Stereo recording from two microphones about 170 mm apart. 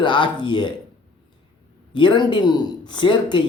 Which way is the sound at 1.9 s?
25° left (ahead or behind).